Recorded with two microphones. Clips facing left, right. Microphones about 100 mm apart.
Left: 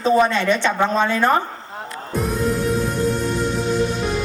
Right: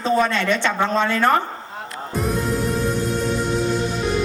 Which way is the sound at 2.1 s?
Centre (ahead or behind).